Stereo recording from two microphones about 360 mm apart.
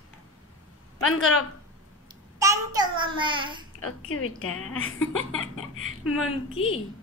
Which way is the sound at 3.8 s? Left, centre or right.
Left.